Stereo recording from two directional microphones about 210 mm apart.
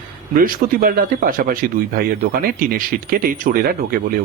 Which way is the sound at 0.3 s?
40° right (ahead or behind).